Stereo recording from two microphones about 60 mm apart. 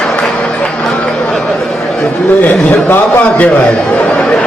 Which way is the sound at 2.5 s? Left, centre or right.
Left.